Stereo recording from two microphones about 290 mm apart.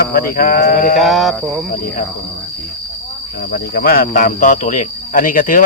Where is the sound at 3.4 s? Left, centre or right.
Left.